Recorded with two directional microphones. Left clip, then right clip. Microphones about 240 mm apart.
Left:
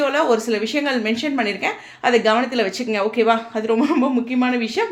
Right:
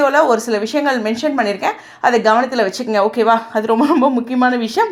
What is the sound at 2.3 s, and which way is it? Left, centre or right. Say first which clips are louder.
Speech: right 5 dB; centre.